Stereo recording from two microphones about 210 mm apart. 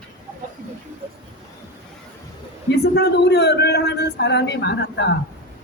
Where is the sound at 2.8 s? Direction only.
50° left (ahead or behind).